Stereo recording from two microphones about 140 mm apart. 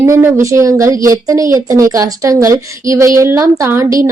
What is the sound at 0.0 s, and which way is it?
Speech, 20° right (ahead or behind).